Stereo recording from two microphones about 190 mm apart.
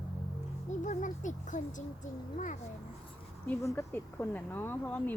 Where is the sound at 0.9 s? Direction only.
40° left (ahead or behind).